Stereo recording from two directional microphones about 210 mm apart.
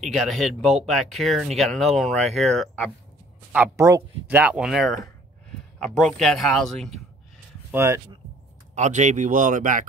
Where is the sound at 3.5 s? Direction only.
10° right (ahead or behind).